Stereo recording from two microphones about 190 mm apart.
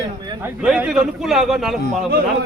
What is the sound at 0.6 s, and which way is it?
Speech, 5° right (ahead or behind).